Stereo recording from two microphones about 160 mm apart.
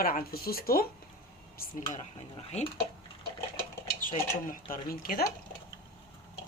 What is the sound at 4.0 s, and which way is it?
Speech, 60° left (ahead or behind).